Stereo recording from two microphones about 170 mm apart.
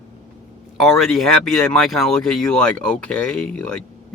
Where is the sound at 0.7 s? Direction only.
Centre (ahead or behind).